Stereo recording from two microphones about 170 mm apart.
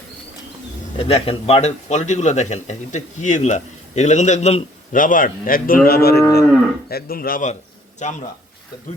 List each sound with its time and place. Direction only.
0.9 s speech: 35° left (ahead or behind); by 7.5 s 55° left (ahead or behind)
8.0 s speech: 45° left (ahead or behind)